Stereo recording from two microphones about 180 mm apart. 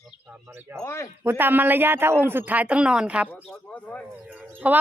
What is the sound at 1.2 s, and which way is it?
Speech, 10° right (ahead or behind).